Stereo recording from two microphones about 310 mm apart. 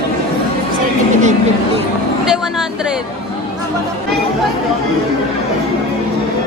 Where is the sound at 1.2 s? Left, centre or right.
Right.